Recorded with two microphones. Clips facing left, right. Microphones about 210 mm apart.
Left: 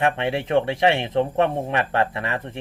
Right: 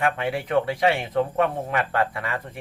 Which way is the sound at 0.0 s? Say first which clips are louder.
Left 2 dB; 25° left (ahead or behind).